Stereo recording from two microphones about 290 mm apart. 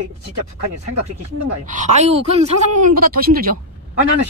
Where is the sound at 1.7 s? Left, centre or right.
Right.